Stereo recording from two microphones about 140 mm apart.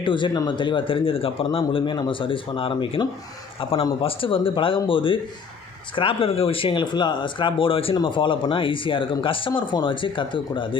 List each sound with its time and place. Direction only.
0.0 s speech: 35° left (ahead or behind)